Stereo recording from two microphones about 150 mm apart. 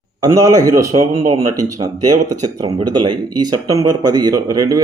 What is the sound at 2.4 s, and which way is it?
Speech, 25° right (ahead or behind).